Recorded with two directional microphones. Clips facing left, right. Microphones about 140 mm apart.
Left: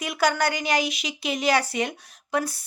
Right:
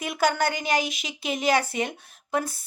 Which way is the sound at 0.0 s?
45° right (ahead or behind).